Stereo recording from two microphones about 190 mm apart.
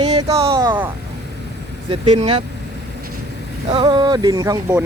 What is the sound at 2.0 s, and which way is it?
Speech, 25° right (ahead or behind).